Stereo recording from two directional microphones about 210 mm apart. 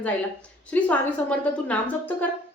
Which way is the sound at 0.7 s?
10° left (ahead or behind).